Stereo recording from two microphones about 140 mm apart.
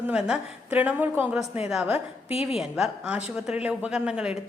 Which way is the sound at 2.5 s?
Centre (ahead or behind).